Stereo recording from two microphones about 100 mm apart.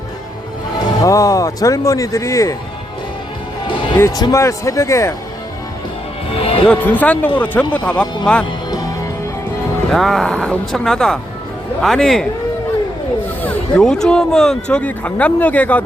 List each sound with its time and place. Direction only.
1.0 s speech: 35° left (ahead or behind)
4.1 s speech: 35° left (ahead or behind)
6.3 s speech: 70° left (ahead or behind)
6.7 s speech: 15° left (ahead or behind)
9.9 s speech: centre (ahead or behind)
13.4 s a sound: 15° left (ahead or behind)
13.8 s speech: 5° left (ahead or behind)